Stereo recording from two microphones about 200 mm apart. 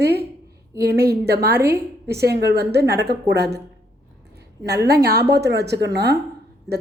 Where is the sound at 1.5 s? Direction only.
15° right (ahead or behind).